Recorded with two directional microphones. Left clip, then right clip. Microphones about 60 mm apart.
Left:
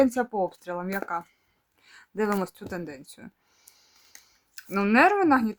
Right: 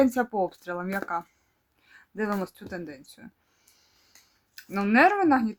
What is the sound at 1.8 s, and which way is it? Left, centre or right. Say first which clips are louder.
Speech: left 3 dB; left.